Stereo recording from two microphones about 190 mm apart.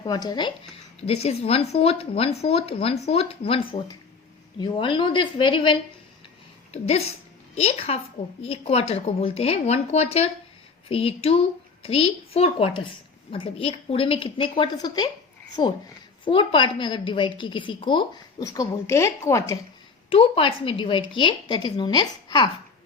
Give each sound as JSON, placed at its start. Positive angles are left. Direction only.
{"t": 0.0, "sound": "a woman's voice", "side_deg": 20}
{"t": 1.0, "sound": "a woman's voice", "side_deg": 35}
{"t": 6.8, "sound": "a woman's voice", "side_deg": 35}
{"t": 20.1, "sound": "a woman's voice", "side_deg": 30}